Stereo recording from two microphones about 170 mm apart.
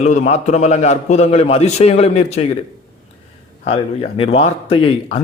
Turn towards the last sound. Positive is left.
turn(degrees=30)  # may be behind; listen again after turning